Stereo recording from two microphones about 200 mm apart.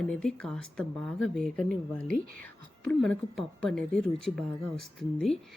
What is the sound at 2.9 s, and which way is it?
Speech, centre (ahead or behind).